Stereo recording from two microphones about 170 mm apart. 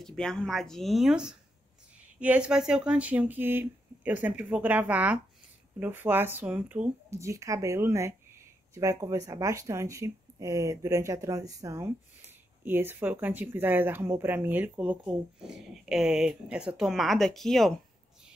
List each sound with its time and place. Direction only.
0.0 s speech: 5° left (ahead or behind)